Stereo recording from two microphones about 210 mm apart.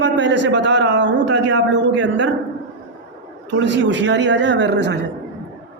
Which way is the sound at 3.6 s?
60° right (ahead or behind).